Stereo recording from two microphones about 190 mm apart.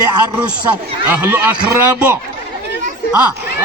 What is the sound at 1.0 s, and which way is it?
A man's voice, 10° right (ahead or behind).